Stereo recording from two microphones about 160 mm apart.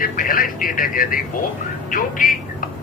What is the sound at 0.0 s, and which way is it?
A man's voice, 60° left (ahead or behind).